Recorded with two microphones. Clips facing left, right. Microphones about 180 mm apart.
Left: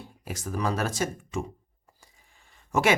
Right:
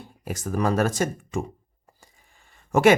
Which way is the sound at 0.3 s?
50° right (ahead or behind).